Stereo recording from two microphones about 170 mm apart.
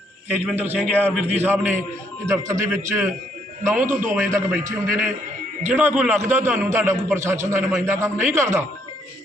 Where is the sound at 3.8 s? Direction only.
50° right (ahead or behind).